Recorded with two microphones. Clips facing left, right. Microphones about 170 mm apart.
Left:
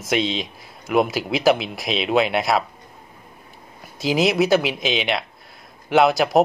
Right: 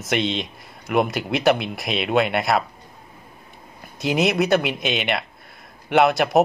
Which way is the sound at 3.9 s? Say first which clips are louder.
Left 1 dB; centre (ahead or behind).